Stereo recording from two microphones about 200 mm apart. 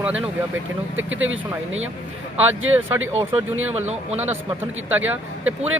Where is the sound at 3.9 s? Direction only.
35° right (ahead or behind).